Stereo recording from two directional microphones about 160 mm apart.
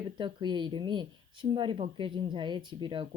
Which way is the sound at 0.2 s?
30° right (ahead or behind).